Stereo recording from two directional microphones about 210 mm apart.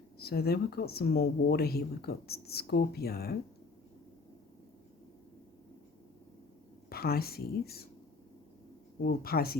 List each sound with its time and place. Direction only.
0.2 s speech: 50° left (ahead or behind)
6.9 s speech: 45° left (ahead or behind)
9.0 s speech: 45° left (ahead or behind)